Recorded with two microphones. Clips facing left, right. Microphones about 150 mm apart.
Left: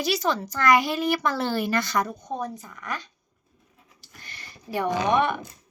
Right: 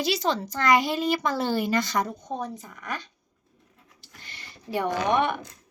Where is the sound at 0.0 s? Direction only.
20° right (ahead or behind).